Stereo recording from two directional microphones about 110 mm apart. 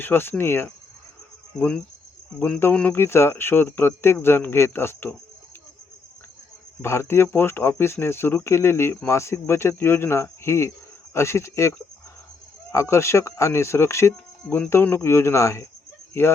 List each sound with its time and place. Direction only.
0.0 s speech: 20° left (ahead or behind)
1.5 s cricket: 10° left (ahead or behind)
2.4 s speech: 15° left (ahead or behind)
6.8 s speech: 25° left (ahead or behind)
12.7 s speech: 25° left (ahead or behind)